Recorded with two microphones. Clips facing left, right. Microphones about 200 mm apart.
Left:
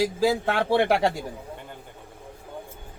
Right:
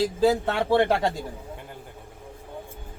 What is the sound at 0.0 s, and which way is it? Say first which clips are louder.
A man's voice: right 1 dB; 10° left (ahead or behind).